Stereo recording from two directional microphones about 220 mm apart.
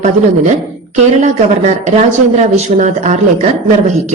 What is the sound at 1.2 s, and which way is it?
Speech, 30° right (ahead or behind).